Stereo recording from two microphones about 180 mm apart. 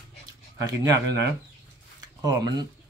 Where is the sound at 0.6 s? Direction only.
20° right (ahead or behind).